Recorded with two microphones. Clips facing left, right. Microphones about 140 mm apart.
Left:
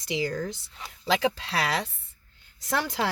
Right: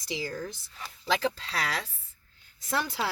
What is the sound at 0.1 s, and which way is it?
Speech, 80° left.